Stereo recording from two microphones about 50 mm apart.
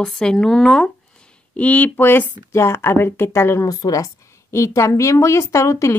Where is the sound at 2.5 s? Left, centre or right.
Left.